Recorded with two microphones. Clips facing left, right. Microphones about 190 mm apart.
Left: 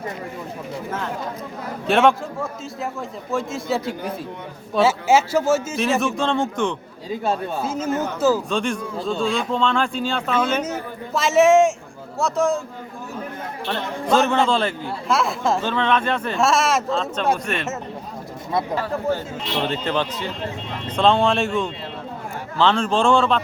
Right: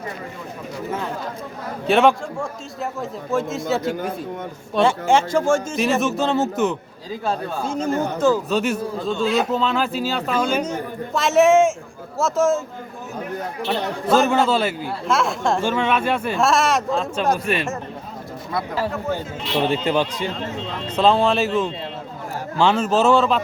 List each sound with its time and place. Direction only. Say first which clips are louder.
1.9 s speech: right 1 dB; centre (ahead or behind)
7.8 s speech: right 3 dB; 35° right (ahead or behind)
8.4 s speech: right 2 dB; 5° right (ahead or behind)
14.1 s speech: right 1 dB; 5° right (ahead or behind)
15.6 s speech: right 1 dB; 10° right (ahead or behind)
16.9 s speech: right 1 dB; 10° right (ahead or behind)
19.6 s speech: right 4 dB; 10° right (ahead or behind)